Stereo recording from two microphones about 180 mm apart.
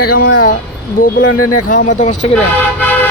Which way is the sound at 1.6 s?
45° left (ahead or behind).